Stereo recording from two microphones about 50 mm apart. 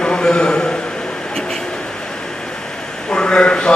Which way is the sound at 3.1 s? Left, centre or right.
Centre.